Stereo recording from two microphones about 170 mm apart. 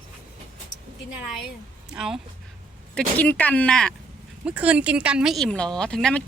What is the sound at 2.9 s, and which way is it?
Speech, 10° left (ahead or behind).